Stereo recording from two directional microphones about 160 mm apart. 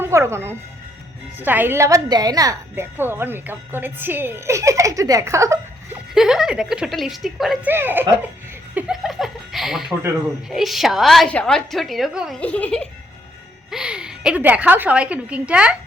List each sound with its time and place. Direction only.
0.0 s a woman's voice: 15° right (ahead or behind)
6.1 s a woman's voice: 5° right (ahead or behind)
7.7 s a woman's voice: 15° right (ahead or behind)
8.7 s laughter: centre (ahead or behind)
10.5 s a woman's voice: centre (ahead or behind)
12.4 s speech: 10° left (ahead or behind)
13.7 s a woman's voice: 5° right (ahead or behind)